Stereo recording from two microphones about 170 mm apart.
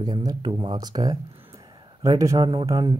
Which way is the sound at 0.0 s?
25° right (ahead or behind).